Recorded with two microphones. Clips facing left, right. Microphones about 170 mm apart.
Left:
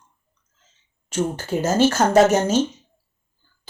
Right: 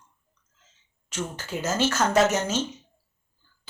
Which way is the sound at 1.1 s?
30° left (ahead or behind).